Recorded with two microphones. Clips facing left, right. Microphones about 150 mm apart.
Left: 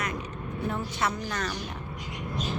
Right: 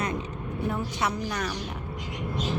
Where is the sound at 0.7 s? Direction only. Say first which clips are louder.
Even; 10° right (ahead or behind).